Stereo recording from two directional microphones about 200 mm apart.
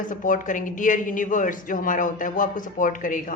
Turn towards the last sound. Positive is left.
turn(degrees=40)  # may be behind; listen again after turning